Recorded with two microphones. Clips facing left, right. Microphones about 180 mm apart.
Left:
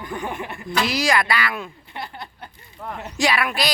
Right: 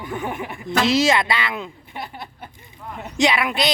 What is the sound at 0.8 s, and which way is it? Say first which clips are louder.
Speech: right 4 dB; 25° right (ahead or behind).